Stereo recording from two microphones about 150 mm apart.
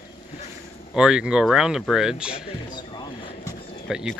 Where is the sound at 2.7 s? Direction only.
25° left (ahead or behind).